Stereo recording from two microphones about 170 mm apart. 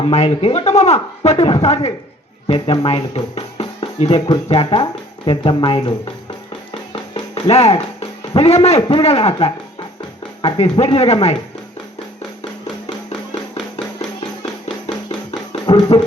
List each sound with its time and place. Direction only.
0.0 s speech: 40° left (ahead or behind)
6.7 s music: 30° left (ahead or behind)
8.3 s speech: 35° left (ahead or behind)
15.3 s music: 35° left (ahead or behind)